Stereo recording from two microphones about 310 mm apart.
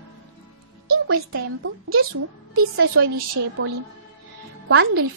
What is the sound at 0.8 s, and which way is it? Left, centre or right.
Music, right.